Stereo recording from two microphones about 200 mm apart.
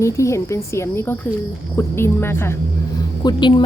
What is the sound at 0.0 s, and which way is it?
A woman's voice, 15° left (ahead or behind).